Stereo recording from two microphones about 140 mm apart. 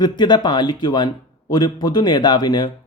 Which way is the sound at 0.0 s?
30° left (ahead or behind).